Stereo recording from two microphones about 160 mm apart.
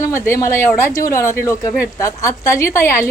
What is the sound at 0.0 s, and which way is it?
A woman's voice, 15° left (ahead or behind).